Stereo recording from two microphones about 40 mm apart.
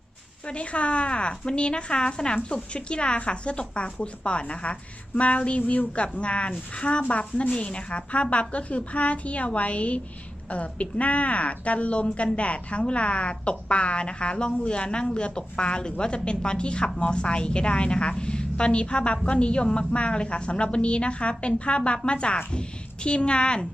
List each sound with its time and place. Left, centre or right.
0.4 s a woman's voice: left